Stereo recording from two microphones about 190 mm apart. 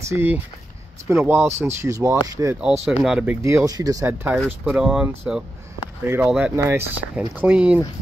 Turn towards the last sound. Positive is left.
turn(degrees=-5)  # may be behind; listen again after turning